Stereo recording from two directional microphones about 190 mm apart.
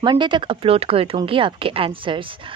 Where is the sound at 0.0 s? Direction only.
25° right (ahead or behind).